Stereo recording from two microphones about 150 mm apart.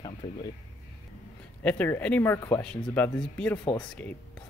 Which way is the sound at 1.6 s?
10° left (ahead or behind).